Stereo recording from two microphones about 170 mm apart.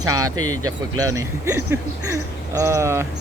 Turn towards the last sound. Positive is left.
turn(degrees=-15)  # may be behind; listen again after turning